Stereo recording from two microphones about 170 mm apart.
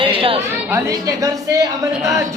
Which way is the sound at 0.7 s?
20° right (ahead or behind).